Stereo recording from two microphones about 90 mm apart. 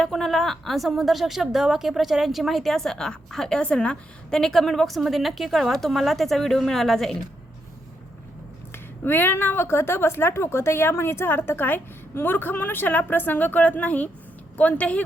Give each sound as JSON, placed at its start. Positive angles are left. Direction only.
{"t": 0.0, "sound": "a woman's voice", "side_deg": 5}
{"t": 8.7, "sound": "speech", "side_deg": 20}